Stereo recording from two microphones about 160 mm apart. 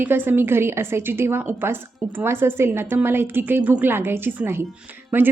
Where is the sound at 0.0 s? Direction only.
15° right (ahead or behind).